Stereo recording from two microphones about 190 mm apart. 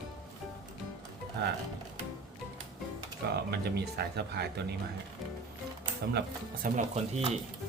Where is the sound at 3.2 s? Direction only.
60° right (ahead or behind).